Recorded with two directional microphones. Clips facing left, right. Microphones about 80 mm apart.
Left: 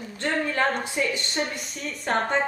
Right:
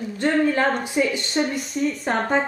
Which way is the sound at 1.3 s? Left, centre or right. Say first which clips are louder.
Right 7 dB; centre.